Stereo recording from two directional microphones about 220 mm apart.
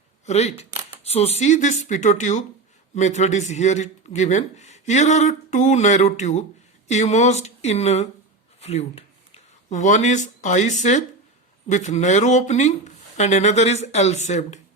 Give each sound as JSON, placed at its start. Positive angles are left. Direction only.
{"t": 0.3, "sound": "speech", "side_deg": 30}